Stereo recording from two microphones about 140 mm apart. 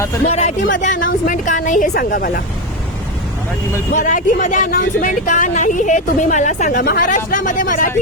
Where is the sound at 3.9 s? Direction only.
65° left (ahead or behind).